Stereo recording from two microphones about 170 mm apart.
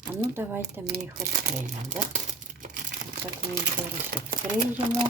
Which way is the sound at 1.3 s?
50° right (ahead or behind).